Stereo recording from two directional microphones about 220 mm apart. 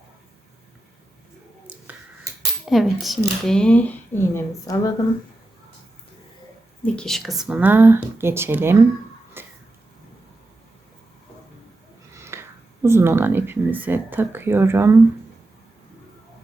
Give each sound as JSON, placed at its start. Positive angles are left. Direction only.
{"t": 2.6, "sound": "speech", "side_deg": 0}
{"t": 6.8, "sound": "speech", "side_deg": 5}
{"t": 9.4, "sound": "a sound", "side_deg": -10}
{"t": 12.1, "sound": "speech", "side_deg": -10}